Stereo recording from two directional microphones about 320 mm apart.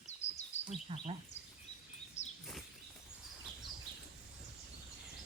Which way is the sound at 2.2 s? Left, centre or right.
Left.